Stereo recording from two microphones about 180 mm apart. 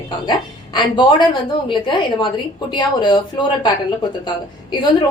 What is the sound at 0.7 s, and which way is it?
Speech, 25° left (ahead or behind).